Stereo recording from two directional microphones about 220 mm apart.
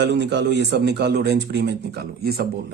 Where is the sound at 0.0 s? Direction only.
50° right (ahead or behind).